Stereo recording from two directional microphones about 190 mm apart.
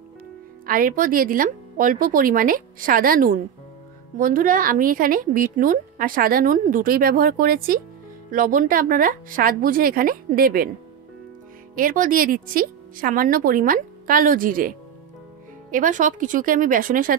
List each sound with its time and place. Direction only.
0.7 s a woman's voice: 45° right (ahead or behind)
11.7 s a woman's voice: 45° right (ahead or behind)
15.7 s a woman's voice: 45° right (ahead or behind)